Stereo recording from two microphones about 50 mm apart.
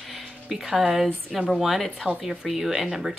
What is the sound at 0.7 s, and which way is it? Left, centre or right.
Speech, centre.